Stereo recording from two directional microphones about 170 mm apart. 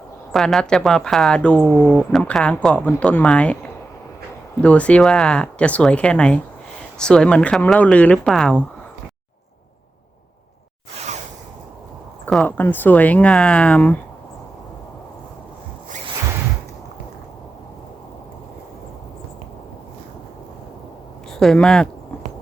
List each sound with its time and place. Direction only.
0.3 s speech: 5° left (ahead or behind)
4.6 s speech: 5° left (ahead or behind)
10.9 s a sound: 40° right (ahead or behind)
12.2 s speech: 10° left (ahead or behind)
21.3 s speech: 5° left (ahead or behind)